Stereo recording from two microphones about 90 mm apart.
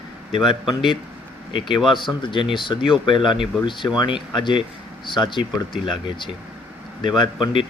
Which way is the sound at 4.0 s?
60° left (ahead or behind).